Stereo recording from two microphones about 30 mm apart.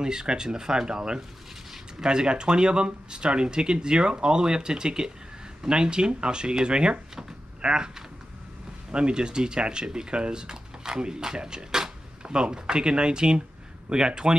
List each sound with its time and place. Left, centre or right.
0.0 s speech: right
8.9 s speech: right